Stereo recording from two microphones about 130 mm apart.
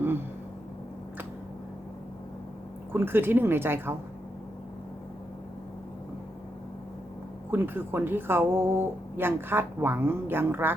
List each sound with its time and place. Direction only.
2.9 s speech: 15° right (ahead or behind)
7.5 s speech: 15° right (ahead or behind)